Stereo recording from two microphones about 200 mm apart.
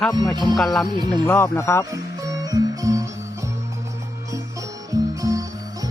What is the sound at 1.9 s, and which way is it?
Music, 15° right (ahead or behind).